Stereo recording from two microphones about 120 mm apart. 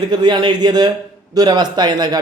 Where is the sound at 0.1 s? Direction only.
35° right (ahead or behind).